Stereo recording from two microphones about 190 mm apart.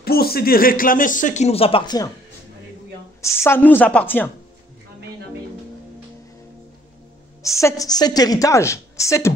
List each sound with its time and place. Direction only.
0.0 s speech: 55° left (ahead or behind); by 2.0 s 25° left (ahead or behind)
3.2 s a woman's voice: 15° left (ahead or behind)
7.4 s a woman's voice: 15° left (ahead or behind)